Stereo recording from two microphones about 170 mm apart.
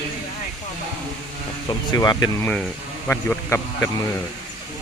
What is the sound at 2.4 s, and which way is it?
Speech, 10° left (ahead or behind).